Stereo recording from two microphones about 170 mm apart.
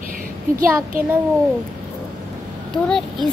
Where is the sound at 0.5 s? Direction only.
55° right (ahead or behind).